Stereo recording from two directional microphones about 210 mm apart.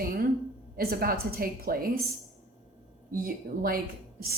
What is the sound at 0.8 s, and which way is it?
Speech, 45° right (ahead or behind).